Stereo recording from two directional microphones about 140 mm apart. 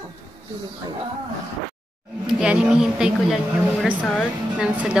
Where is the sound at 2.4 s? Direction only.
5° right (ahead or behind).